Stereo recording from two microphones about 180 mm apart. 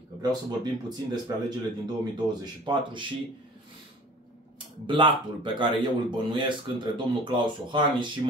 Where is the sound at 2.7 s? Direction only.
25° right (ahead or behind).